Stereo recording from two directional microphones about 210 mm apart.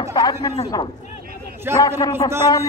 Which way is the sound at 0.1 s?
15° left (ahead or behind).